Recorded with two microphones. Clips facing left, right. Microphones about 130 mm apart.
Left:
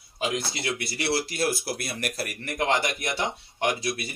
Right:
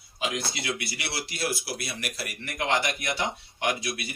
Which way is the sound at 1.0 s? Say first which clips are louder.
Left 6 dB; 40° left (ahead or behind).